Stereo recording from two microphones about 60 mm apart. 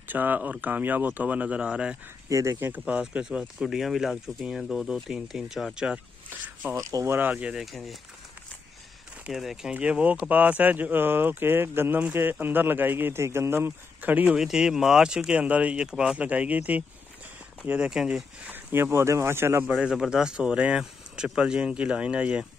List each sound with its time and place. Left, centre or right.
0.1 s speech: right
2.2 s speech: right
2.9 s speech: centre
6.7 s speech: right
7.5 s speech: centre
9.3 s speech: centre
9.8 s speech: right
14.2 s speech: centre
18.5 s speech: right
19.9 s speech: centre